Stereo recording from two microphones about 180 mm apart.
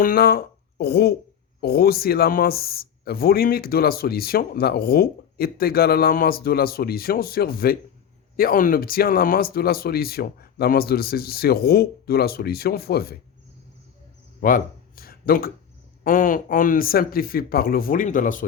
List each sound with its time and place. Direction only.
0.0 s speech: 55° left (ahead or behind)
14.4 s a sound: 50° left (ahead or behind)
16.0 s speech: 50° left (ahead or behind)